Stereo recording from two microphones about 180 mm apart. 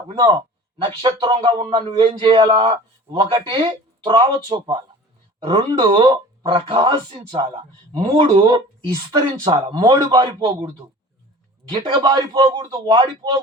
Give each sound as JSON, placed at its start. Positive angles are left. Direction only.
{"t": 0.1, "sound": "speech", "side_deg": -30}
{"t": 11.7, "sound": "speech", "side_deg": -25}